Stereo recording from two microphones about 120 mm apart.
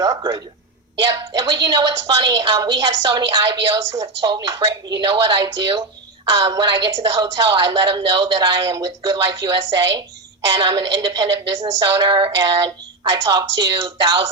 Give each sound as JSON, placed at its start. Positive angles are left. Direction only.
{"t": 0.0, "sound": "a woman's voice", "side_deg": -30}